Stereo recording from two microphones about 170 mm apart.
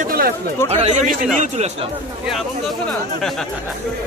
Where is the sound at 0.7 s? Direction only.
40° right (ahead or behind).